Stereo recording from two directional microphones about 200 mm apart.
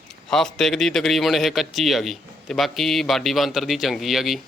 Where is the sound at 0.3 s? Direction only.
Centre (ahead or behind).